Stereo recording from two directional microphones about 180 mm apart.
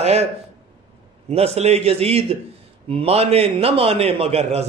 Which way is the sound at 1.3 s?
35° right (ahead or behind).